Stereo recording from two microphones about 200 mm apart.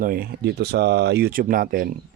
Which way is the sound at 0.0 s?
45° right (ahead or behind).